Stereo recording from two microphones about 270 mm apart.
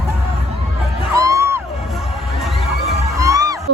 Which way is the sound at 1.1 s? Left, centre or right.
Centre.